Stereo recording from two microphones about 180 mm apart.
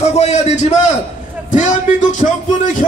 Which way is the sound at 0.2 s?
40° left (ahead or behind).